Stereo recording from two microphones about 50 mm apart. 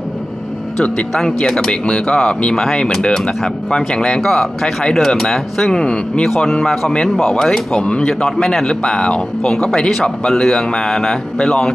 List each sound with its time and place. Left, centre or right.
1.1 s speech: centre
7.8 s speech: left
8.1 s speech: centre